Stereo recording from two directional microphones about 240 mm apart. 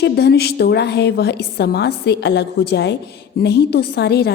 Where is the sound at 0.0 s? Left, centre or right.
Left.